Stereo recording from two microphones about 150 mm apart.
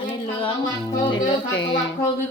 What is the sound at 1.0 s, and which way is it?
Music, 30° left (ahead or behind).